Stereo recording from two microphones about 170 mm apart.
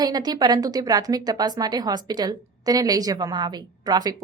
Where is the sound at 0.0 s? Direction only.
25° right (ahead or behind).